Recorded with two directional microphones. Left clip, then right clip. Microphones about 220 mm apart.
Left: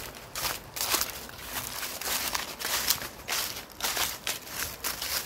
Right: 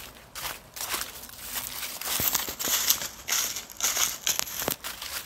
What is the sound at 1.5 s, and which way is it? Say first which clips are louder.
Crumpling: even; 50° right (ahead or behind).